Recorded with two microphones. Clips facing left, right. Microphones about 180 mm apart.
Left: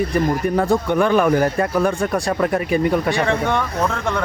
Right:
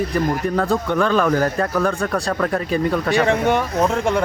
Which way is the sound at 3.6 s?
30° right (ahead or behind).